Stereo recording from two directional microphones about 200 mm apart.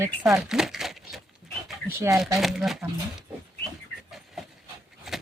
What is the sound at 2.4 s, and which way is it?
Speech, centre (ahead or behind).